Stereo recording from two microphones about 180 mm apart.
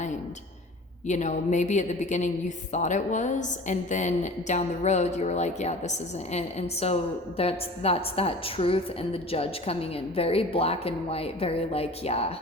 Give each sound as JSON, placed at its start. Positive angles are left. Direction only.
{"t": 1.0, "sound": "a woman's voice", "side_deg": 40}